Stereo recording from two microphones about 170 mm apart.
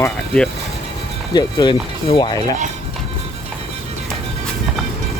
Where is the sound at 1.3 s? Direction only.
25° left (ahead or behind).